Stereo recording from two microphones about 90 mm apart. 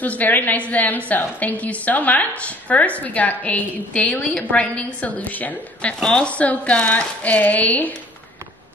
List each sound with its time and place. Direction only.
0.0 s a woman's voice: 20° left (ahead or behind)